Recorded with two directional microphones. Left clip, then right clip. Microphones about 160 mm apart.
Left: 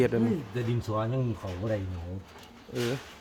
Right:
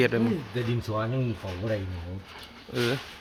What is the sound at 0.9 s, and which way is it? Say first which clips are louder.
Speech: even; centre (ahead or behind).